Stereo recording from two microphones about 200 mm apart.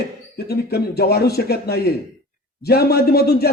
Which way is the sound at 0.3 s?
50° left (ahead or behind).